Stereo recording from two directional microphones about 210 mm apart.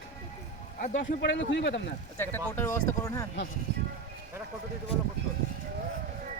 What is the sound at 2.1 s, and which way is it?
Speech, 10° left (ahead or behind).